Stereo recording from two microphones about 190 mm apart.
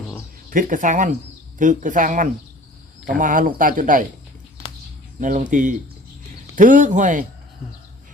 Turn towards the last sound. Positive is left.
turn(degrees=-40)  # may be behind; listen again after turning